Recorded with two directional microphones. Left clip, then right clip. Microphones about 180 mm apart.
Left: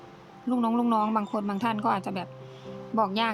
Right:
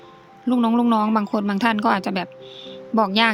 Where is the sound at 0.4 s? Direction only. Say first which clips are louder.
Right 7 dB; 30° right (ahead or behind).